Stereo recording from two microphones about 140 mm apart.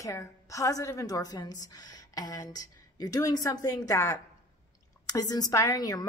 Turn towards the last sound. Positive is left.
turn(degrees=25)  # may be behind; listen again after turning